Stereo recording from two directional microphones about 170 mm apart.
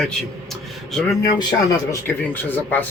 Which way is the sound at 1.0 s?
25° left (ahead or behind).